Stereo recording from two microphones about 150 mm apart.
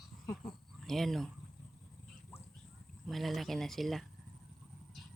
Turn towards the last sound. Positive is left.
turn(degrees=0)  # may be behind; listen again after turning